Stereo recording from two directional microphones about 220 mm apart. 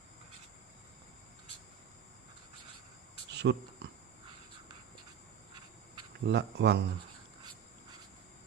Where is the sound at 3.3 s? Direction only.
50° right (ahead or behind).